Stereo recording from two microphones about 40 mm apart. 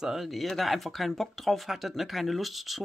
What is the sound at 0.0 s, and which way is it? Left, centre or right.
Speech, centre.